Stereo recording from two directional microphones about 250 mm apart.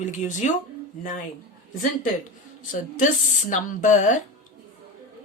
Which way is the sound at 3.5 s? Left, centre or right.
Left.